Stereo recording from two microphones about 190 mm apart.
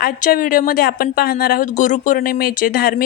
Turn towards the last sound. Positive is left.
turn(degrees=50)  # may be behind; listen again after turning